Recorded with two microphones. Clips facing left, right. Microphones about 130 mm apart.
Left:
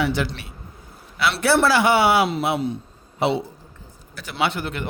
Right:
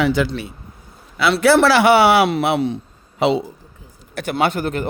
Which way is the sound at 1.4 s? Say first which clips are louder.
Right 5 dB; 90° right.